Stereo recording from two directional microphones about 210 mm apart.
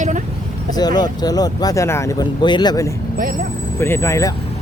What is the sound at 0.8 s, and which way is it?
Speech, 20° left (ahead or behind).